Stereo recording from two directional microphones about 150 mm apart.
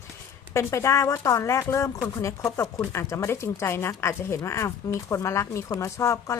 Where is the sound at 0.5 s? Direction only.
20° left (ahead or behind).